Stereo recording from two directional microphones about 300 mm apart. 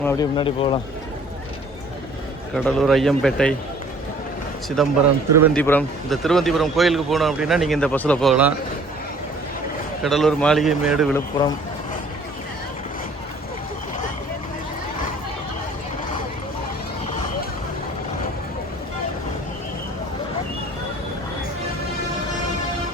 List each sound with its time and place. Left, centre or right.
0.0 s speech: centre
2.6 s speech: centre
4.8 s speech: centre
10.0 s speech: centre
11.1 s speech: centre